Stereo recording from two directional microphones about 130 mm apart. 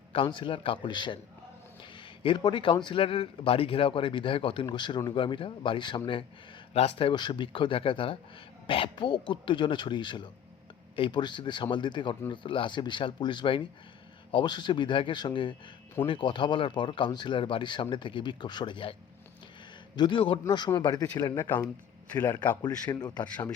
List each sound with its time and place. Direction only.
0.1 s speech: 40° left (ahead or behind)
2.2 s speech: 40° left (ahead or behind)
20.0 s speech: 40° left (ahead or behind)
22.6 s speech: 30° left (ahead or behind)